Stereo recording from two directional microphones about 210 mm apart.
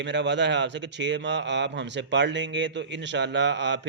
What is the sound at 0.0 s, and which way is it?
Speech, 55° right (ahead or behind).